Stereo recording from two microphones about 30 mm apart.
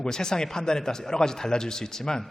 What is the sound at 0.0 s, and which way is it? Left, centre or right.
A man's voice, left.